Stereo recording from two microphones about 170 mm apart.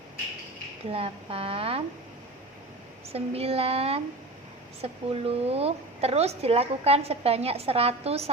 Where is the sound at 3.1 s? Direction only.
35° right (ahead or behind).